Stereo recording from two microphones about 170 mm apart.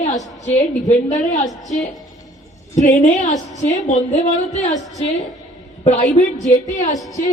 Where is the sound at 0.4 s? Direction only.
45° left (ahead or behind).